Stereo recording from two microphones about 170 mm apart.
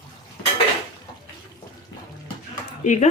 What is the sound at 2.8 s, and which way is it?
Speech, 45° left (ahead or behind).